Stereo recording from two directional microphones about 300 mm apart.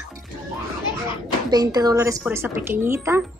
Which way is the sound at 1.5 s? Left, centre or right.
Centre.